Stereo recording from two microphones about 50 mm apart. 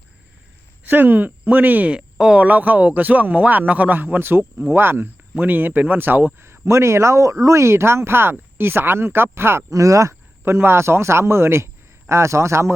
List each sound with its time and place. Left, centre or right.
0.9 s a man's voice: right
2.0 s speech: centre
2.4 s a man's voice: right
6.4 s a man's voice: right
7.4 s a man's voice: right
9.7 s speech: right
10.4 s a man's voice: right